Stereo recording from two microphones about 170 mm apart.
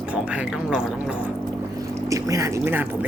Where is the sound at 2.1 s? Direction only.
20° right (ahead or behind).